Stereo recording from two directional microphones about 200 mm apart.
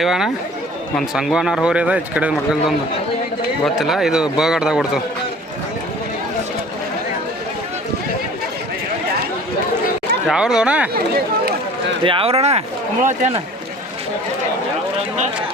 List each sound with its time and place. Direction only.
0.0 s a man's voice: centre (ahead or behind)
3.8 s a man's voice: centre (ahead or behind)
10.2 s a man's voice: 5° right (ahead or behind)
12.0 s speech: 25° right (ahead or behind)